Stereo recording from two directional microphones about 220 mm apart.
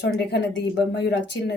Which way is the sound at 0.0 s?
50° left (ahead or behind).